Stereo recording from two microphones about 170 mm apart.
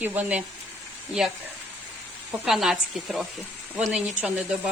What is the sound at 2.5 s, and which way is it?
A woman's voice, centre (ahead or behind).